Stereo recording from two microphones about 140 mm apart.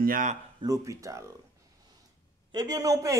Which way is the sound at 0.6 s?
25° right (ahead or behind).